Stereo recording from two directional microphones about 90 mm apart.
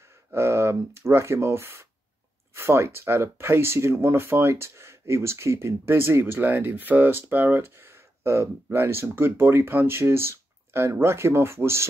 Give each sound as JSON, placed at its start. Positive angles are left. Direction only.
{"t": 0.3, "sound": "speech", "side_deg": -30}